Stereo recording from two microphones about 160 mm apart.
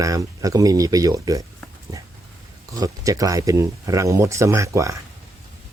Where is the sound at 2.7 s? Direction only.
20° right (ahead or behind).